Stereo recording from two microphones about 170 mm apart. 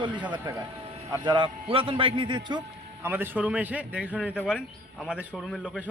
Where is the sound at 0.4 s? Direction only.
20° right (ahead or behind).